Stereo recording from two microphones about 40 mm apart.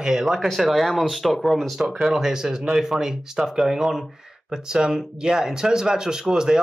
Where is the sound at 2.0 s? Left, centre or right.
Centre.